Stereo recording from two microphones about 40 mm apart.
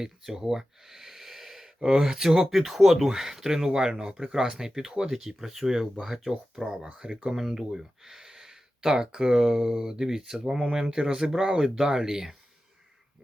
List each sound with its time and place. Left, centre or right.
0.0 s speech: centre
6.6 s speech: centre
7.3 s speech: centre